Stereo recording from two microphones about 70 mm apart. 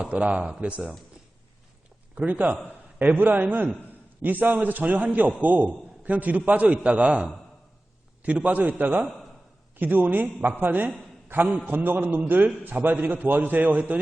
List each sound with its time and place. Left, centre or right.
0.0 s a man's voice: right
2.1 s a man's voice: right